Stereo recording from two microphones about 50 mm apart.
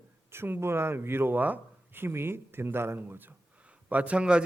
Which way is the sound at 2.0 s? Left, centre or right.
Right.